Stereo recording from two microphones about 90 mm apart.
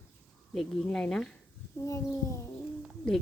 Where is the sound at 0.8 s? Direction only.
10° left (ahead or behind).